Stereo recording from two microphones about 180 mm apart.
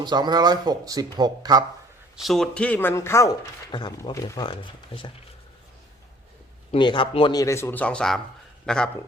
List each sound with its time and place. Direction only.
0.0 s speech: 25° right (ahead or behind)
2.1 s speech: centre (ahead or behind); by 4.4 s 20° left (ahead or behind)
4.9 s speech: 30° left (ahead or behind)
6.7 s a man's voice: 25° left (ahead or behind); by 8.9 s 5° left (ahead or behind)